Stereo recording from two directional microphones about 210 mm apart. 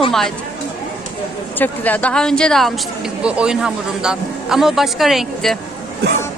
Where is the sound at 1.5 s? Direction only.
10° left (ahead or behind).